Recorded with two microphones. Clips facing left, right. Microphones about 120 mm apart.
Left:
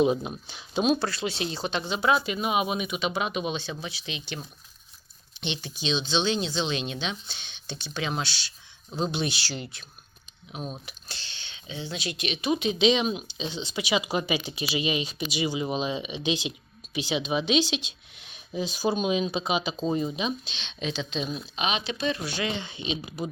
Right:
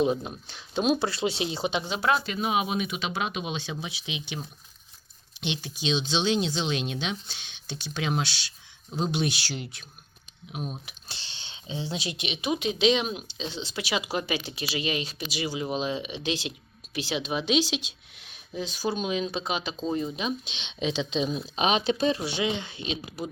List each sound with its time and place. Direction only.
0.0 s speech: 10° left (ahead or behind)
0.9 s speech: 20° right (ahead or behind); by 3.8 s 5° right (ahead or behind)
3.8 s speech: 15° right (ahead or behind)
11.1 s speech: 25° right (ahead or behind)
12.5 s speech: 5° right (ahead or behind)
18.3 s speech: 10° left (ahead or behind)
20.4 s speech: 15° right (ahead or behind)
21.3 s speech: 35° right (ahead or behind)
22.5 s speech: 5° right (ahead or behind)